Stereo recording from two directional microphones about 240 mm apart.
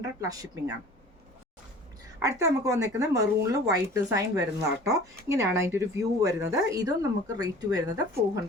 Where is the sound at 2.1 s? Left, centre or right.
Centre.